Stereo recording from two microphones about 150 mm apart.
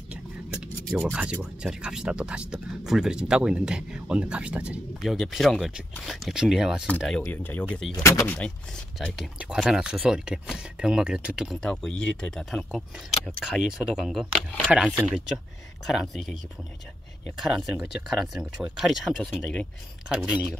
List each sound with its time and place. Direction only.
0.1 s whispering: 5° right (ahead or behind)
1.1 s speech: 5° right (ahead or behind); by 7.9 s 10° left (ahead or behind)
7.9 s speech: 20° left (ahead or behind)
8.4 s speech: 5° left (ahead or behind)
17.4 s speech: centre (ahead or behind)